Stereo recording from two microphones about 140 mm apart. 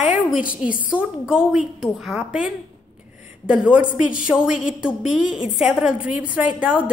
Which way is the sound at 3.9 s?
75° left (ahead or behind).